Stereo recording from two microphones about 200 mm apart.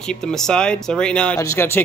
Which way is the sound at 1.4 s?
15° left (ahead or behind).